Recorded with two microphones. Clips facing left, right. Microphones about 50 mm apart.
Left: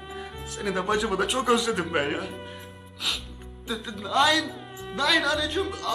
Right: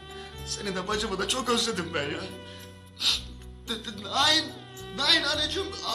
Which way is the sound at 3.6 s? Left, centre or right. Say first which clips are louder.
Left 4 dB; centre.